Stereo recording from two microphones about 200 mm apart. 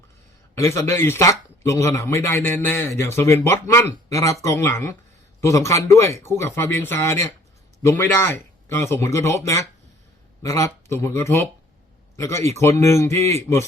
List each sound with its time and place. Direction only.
0.5 s speech: 15° left (ahead or behind)